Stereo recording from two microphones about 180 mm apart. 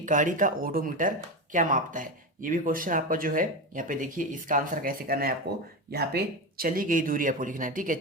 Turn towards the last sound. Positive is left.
turn(degrees=-50)  # may be behind; listen again after turning